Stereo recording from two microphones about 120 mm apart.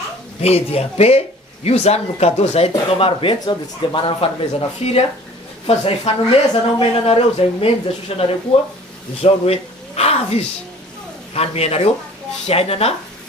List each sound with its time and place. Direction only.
0.4 s speech: 60° left (ahead or behind)
4.8 s speech: 55° left (ahead or behind)
11.3 s speech: 60° left (ahead or behind)